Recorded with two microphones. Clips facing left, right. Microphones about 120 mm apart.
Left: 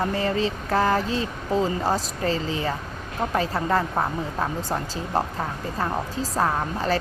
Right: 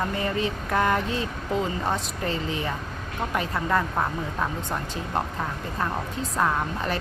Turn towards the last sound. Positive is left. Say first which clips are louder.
# left 2 dB
turn(degrees=35)  # may be behind; listen again after turning